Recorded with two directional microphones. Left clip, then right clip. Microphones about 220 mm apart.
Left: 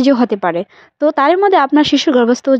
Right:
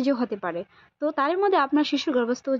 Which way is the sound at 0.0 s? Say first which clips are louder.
Left 13 dB; 35° left (ahead or behind).